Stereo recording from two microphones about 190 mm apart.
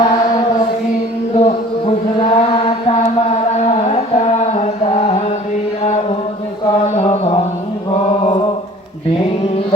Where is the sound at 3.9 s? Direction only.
35° left (ahead or behind).